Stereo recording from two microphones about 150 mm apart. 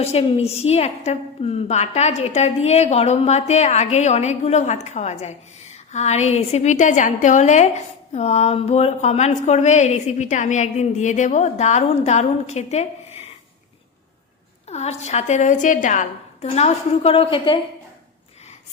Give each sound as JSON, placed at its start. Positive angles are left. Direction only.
{"t": 0.0, "sound": "a woman's voice", "side_deg": 40}
{"t": 14.7, "sound": "a woman's voice", "side_deg": 45}